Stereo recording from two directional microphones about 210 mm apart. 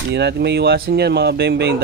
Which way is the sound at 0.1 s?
55° right (ahead or behind).